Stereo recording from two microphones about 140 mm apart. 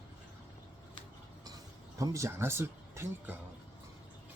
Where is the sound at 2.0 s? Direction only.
20° right (ahead or behind).